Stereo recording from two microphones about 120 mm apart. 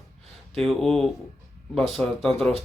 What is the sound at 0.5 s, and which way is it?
Speech, 5° left (ahead or behind).